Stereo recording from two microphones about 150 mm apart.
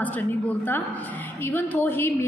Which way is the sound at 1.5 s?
15° left (ahead or behind).